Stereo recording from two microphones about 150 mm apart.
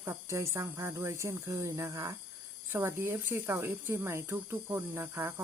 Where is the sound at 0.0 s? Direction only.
20° right (ahead or behind).